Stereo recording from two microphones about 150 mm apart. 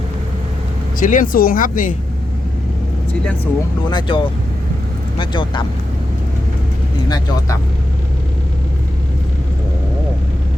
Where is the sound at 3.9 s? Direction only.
30° left (ahead or behind).